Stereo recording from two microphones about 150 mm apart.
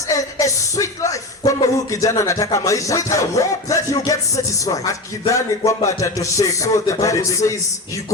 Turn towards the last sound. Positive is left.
turn(degrees=20)  # may be behind; listen again after turning